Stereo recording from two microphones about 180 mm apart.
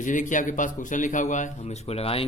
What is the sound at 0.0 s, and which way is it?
A man's voice, 45° left (ahead or behind).